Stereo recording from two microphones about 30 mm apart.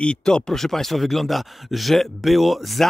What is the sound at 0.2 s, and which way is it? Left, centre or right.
Speech, left.